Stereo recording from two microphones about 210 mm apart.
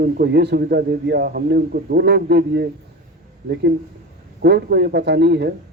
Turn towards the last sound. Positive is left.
turn(degrees=-55)  # may be behind; listen again after turning